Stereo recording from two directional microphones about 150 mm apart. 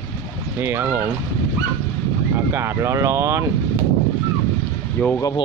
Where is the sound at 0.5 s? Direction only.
15° right (ahead or behind).